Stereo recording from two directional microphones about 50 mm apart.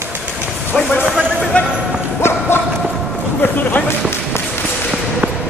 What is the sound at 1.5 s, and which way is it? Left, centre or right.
Clip-clop, left.